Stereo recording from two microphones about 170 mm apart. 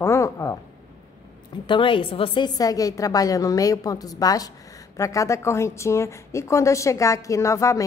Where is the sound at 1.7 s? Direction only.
30° left (ahead or behind).